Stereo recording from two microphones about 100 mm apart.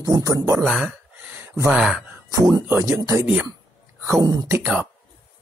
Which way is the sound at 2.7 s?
30° right (ahead or behind).